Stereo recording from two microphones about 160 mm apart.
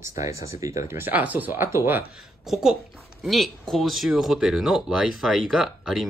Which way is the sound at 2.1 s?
Centre (ahead or behind).